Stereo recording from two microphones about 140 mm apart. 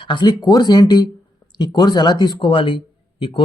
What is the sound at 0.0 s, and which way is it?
Speech, 35° left (ahead or behind).